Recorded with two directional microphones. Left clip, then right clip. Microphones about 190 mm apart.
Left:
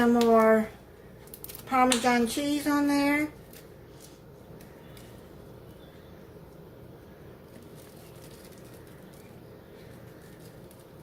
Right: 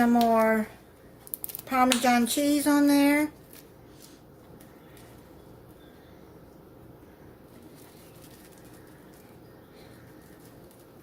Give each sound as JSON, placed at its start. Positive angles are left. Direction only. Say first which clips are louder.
{"t": 0.0, "sound": "speech", "louder": "left 1 dB", "side_deg": -55}
{"t": 1.6, "sound": "hands", "louder": "even", "side_deg": -55}
{"t": 2.0, "sound": "speech", "louder": "right 2 dB", "side_deg": -55}